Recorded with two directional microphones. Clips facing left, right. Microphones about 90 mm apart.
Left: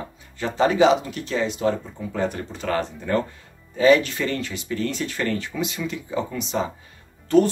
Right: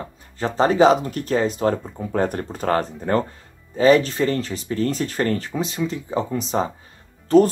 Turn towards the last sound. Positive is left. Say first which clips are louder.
# right 3 dB
turn(degrees=-40)  # may be behind; listen again after turning